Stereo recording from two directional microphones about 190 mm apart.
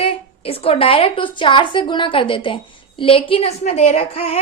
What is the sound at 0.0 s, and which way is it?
A woman's voice, 30° left (ahead or behind).